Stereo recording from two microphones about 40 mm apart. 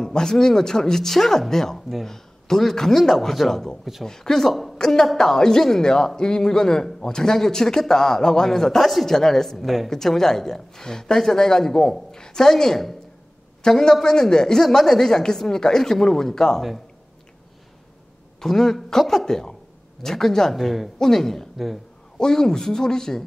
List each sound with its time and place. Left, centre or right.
0.0 s speech: centre
4.5 s a woman's voice: centre
4.7 s a woman's voice: centre
18.4 s speech: centre
20.5 s speech: centre
21.0 s speech: centre